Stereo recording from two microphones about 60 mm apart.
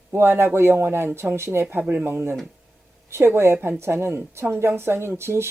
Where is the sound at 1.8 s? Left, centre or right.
Right.